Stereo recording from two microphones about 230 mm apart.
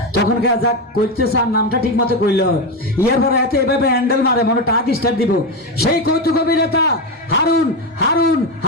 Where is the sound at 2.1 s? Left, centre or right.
Left.